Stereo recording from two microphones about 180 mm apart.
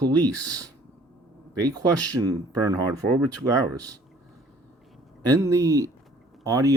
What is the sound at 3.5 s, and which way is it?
Speech, 15° right (ahead or behind).